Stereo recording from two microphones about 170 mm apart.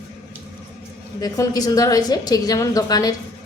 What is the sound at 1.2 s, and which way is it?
A woman's voice, 20° left (ahead or behind).